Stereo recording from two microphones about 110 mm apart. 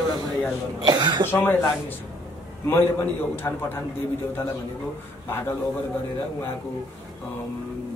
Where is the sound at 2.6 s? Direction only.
20° left (ahead or behind).